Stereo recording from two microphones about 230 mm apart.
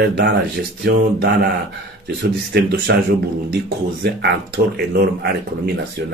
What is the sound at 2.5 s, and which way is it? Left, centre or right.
Speech, right.